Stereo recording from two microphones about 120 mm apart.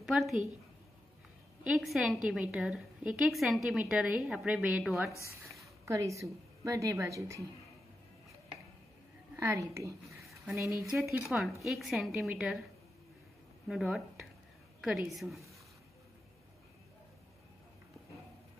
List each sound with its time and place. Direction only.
0.0 s a woman's voice: centre (ahead or behind)
1.6 s a woman's voice: 5° right (ahead or behind)
5.9 s a woman's voice: 25° right (ahead or behind)
9.4 s a woman's voice: 25° right (ahead or behind)
10.0 s a sound: centre (ahead or behind)
10.8 s a woman's voice: centre (ahead or behind)
13.7 s a woman's voice: 5° right (ahead or behind)